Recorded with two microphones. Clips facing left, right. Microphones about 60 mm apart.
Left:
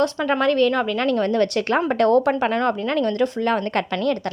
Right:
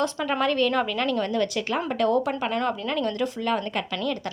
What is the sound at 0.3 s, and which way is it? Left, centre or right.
Speech, centre.